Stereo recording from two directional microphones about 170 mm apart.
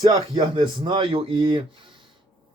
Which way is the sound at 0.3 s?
30° right (ahead or behind).